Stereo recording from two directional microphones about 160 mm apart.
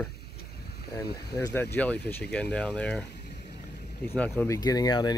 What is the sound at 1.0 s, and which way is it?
Speech, 85° left.